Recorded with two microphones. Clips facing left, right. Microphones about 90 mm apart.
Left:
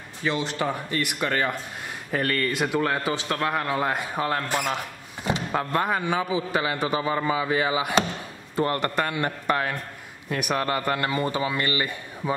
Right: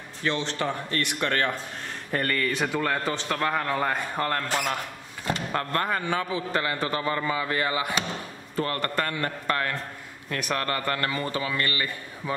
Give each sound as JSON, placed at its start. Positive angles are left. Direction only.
{"t": 0.2, "sound": "a man's voice", "side_deg": 5}